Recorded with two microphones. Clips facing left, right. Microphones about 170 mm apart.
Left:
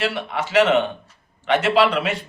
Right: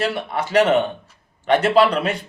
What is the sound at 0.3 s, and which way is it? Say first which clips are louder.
Speech: even; 40° right (ahead or behind).